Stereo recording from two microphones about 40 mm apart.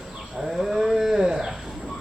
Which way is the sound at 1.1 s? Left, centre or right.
Centre.